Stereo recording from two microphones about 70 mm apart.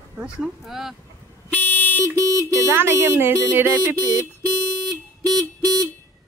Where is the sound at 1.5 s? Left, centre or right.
Left.